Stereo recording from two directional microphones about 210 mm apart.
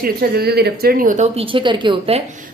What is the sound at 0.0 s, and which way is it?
Speech, 45° right (ahead or behind).